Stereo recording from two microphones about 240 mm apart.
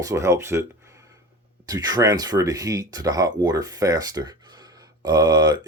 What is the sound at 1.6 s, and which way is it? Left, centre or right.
Speech, centre.